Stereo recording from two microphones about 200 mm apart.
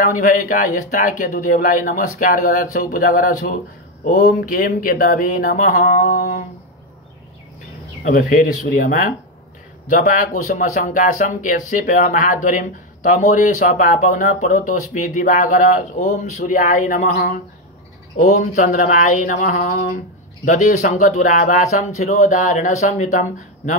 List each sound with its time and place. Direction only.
0.0 s speech: 40° left (ahead or behind)
8.0 s speech: 45° left (ahead or behind)